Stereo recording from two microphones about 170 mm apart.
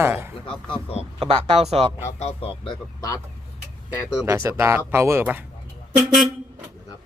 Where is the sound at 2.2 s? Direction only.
35° left (ahead or behind).